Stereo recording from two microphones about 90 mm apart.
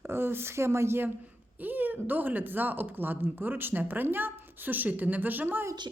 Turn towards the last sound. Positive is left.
turn(degrees=-20)  # may be behind; listen again after turning